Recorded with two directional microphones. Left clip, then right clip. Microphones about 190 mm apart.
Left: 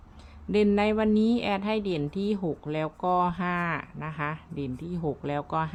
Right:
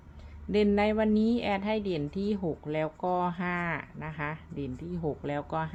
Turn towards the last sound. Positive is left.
turn(degrees=20)  # may be behind; listen again after turning